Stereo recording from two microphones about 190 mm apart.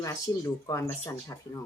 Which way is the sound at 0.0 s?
15° left (ahead or behind).